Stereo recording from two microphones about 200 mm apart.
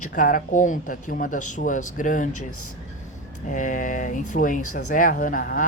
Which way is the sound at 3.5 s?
40° left (ahead or behind).